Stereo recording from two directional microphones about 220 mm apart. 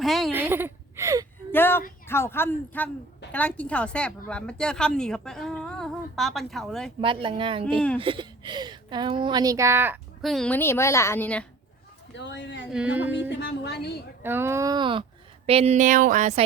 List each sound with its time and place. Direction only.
0.0 s a sound: centre (ahead or behind)
1.5 s a sound: 10° left (ahead or behind)
2.0 s a woman's voice: 10° left (ahead or behind)
7.0 s a woman's voice: 25° right (ahead or behind); by 11.4 s 5° left (ahead or behind)
12.1 s a woman's voice: 55° left (ahead or behind)
12.7 s a woman's voice: 5° right (ahead or behind)
13.4 s a woman's voice: 50° left (ahead or behind)
14.2 s a woman's voice: 10° right (ahead or behind); by 16.4 s 35° right (ahead or behind)